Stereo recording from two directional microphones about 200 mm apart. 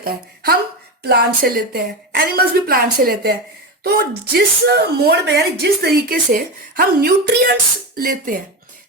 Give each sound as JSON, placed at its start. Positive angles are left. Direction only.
{"t": 0.0, "sound": "speech", "side_deg": -50}